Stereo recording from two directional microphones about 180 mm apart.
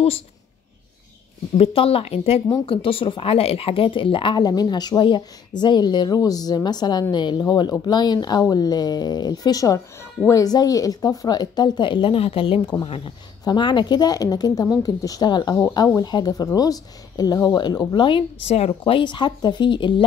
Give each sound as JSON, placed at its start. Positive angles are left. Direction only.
{"t": 1.6, "sound": "speech", "side_deg": 30}